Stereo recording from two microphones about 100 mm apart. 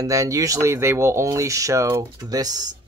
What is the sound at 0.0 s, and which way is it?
Speech, 35° right (ahead or behind).